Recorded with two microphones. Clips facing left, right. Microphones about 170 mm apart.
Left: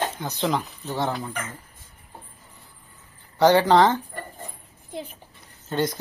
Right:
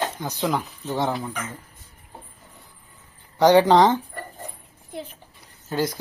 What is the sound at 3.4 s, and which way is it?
Speech, 15° right (ahead or behind).